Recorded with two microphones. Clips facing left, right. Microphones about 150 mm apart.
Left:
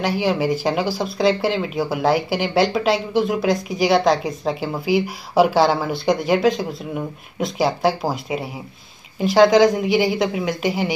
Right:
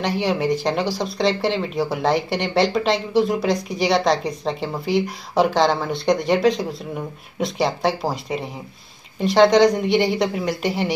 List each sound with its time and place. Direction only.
0.0 s speech: centre (ahead or behind)